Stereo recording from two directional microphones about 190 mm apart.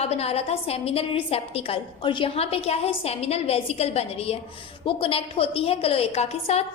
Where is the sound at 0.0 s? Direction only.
35° left (ahead or behind).